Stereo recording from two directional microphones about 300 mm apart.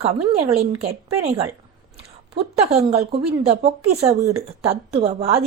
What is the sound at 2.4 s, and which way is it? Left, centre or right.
Speech, centre.